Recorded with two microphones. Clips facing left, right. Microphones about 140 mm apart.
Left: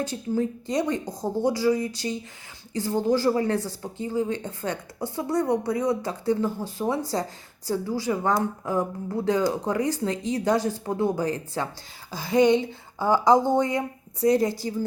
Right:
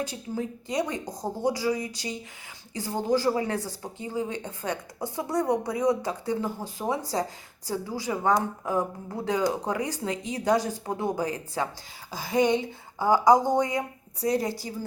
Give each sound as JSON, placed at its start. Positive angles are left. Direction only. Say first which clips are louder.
{"t": 0.0, "sound": "a woman's voice", "louder": "left 5 dB", "side_deg": -10}